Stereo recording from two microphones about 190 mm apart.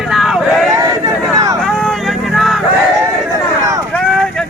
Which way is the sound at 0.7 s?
15° right (ahead or behind).